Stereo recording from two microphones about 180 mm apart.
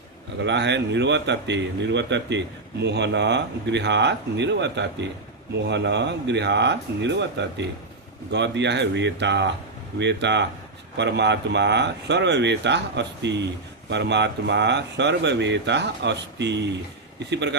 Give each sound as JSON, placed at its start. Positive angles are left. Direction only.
{"t": 0.4, "sound": "speech", "side_deg": -75}